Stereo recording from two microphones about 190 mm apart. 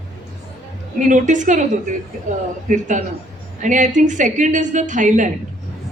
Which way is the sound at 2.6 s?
40° right (ahead or behind).